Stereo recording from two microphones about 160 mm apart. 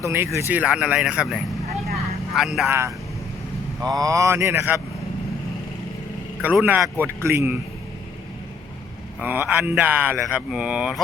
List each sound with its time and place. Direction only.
0.0 s speech: 15° right (ahead or behind)
2.6 s speech: 15° right (ahead or behind)
6.4 s speech: 10° right (ahead or behind)
9.2 s speech: 10° right (ahead or behind)